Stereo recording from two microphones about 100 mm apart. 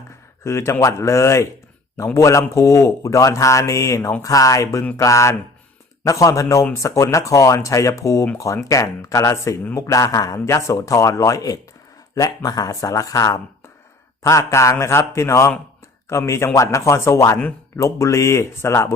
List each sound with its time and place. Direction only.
0.4 s a man's voice: 25° left (ahead or behind)